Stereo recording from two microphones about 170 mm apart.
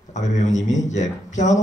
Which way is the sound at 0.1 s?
45° left (ahead or behind).